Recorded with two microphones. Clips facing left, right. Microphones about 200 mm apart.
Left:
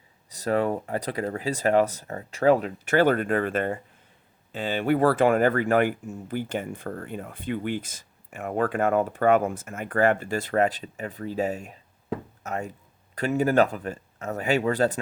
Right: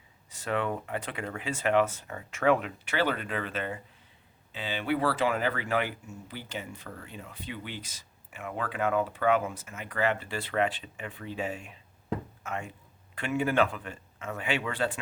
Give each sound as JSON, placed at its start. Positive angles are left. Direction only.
{"t": 0.3, "sound": "speech", "side_deg": 40}